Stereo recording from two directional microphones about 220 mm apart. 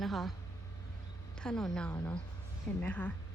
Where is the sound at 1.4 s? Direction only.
5° left (ahead or behind).